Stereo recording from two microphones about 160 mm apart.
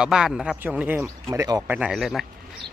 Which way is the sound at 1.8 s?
5° right (ahead or behind).